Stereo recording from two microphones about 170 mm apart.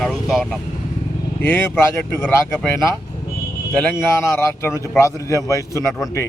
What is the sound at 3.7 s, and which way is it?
A man's voice, 10° left (ahead or behind).